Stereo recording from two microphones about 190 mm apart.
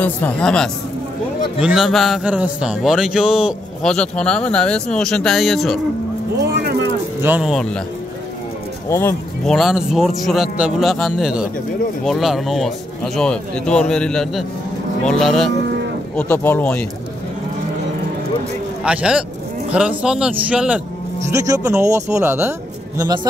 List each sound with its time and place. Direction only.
0.0 s speech: 5° left (ahead or behind)
6.5 s speech: 60° right (ahead or behind)
7.2 s speech: 10° right (ahead or behind)
8.8 s speech: 15° left (ahead or behind)
9.5 s speech: centre (ahead or behind)
18.9 s a man's voice: 5° right (ahead or behind); by 23.2 s 20° right (ahead or behind)